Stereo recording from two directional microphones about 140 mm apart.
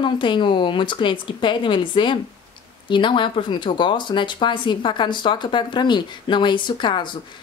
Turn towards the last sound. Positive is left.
turn(degrees=35)  # may be behind; listen again after turning